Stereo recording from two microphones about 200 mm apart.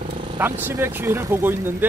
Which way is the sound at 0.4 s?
10° right (ahead or behind).